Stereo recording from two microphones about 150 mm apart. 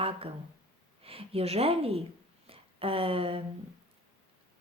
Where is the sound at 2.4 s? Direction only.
40° right (ahead or behind).